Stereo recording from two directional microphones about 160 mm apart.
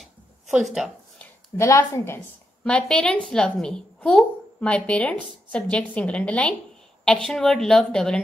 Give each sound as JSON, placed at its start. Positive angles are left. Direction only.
{"t": 0.0, "sound": "a sound", "side_deg": 0}
{"t": 1.6, "sound": "a woman's voice", "side_deg": 20}
{"t": 2.6, "sound": "a woman's voice", "side_deg": 5}